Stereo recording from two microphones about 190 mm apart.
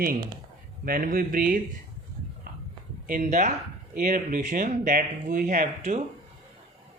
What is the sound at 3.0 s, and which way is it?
Speech, 45° right (ahead or behind).